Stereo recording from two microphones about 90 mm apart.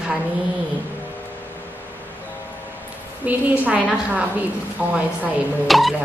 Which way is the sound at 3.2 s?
15° right (ahead or behind).